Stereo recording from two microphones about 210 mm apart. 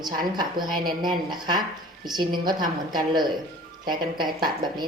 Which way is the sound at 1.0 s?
20° right (ahead or behind).